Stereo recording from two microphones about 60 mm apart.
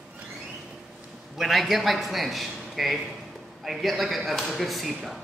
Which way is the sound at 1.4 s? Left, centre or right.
Centre.